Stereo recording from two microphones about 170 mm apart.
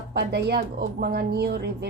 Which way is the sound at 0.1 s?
70° right (ahead or behind).